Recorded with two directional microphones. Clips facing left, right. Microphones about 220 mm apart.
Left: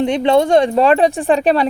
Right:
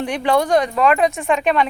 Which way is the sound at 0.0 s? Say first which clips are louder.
Left 5 dB; 25° left (ahead or behind).